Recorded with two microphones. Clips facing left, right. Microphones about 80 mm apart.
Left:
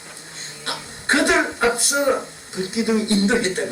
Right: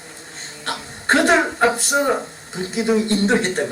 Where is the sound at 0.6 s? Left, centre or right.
Right.